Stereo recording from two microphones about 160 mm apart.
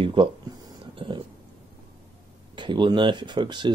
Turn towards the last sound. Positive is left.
turn(degrees=-30)  # may be behind; listen again after turning